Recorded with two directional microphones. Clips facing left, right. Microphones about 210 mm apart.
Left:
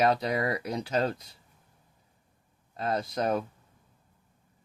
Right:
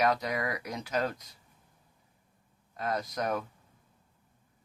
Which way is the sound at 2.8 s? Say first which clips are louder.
Left 3 dB; 30° left (ahead or behind).